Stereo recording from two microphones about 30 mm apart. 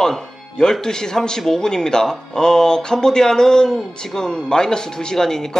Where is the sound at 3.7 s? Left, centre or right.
Centre.